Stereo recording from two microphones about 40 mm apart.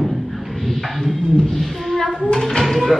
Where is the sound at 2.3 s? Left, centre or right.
Centre.